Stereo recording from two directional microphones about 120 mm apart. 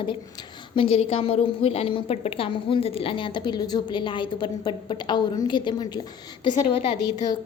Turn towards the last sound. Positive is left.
turn(degrees=35)  # may be behind; listen again after turning